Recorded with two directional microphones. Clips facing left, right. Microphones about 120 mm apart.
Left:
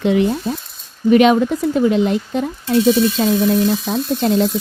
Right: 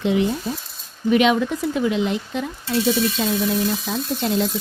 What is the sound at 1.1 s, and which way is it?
Speech, 45° left (ahead or behind).